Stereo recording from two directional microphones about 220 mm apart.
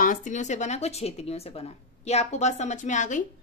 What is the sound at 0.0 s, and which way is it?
A woman's voice, 35° left (ahead or behind).